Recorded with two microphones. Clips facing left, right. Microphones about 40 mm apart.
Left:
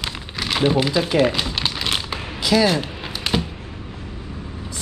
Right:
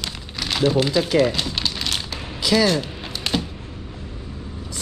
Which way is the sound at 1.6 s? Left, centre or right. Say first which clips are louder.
Left 2 dB; left.